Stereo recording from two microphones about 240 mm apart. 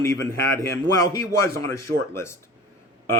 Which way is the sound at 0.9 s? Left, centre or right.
Right.